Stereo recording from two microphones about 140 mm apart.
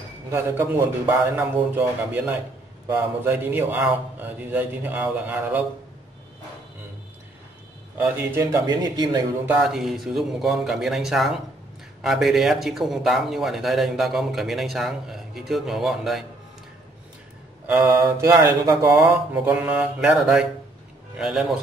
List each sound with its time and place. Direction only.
0.3 s a man's voice: 15° right (ahead or behind)
8.0 s speech: 20° right (ahead or behind)
9.5 s a man's voice: 5° right (ahead or behind)
17.6 s mantra: 15° right (ahead or behind)
18.0 s a man's voice: 20° right (ahead or behind); by 21.5 s 5° right (ahead or behind)